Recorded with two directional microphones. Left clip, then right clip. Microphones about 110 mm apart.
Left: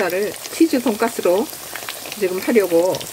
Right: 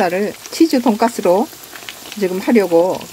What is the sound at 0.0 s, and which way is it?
Speech, 55° right (ahead or behind).